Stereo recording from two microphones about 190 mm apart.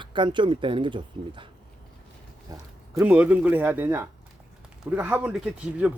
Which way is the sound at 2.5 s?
20° right (ahead or behind).